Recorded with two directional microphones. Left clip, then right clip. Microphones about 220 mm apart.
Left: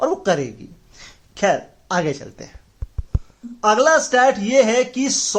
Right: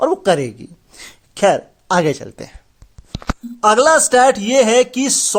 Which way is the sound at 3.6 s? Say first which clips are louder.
Right 3 dB; 50° right (ahead or behind).